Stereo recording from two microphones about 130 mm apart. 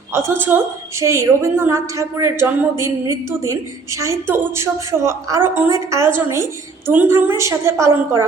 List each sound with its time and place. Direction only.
0.1 s a woman's voice: 20° right (ahead or behind)